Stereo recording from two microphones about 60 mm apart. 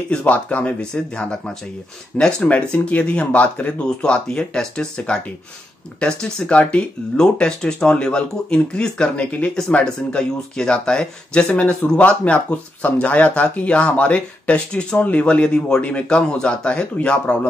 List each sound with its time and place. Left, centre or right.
0.1 s speech: left